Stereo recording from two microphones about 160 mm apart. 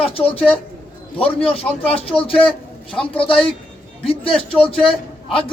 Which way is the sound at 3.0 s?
5° left (ahead or behind).